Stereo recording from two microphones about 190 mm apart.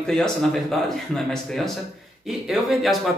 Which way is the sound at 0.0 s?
5° left (ahead or behind).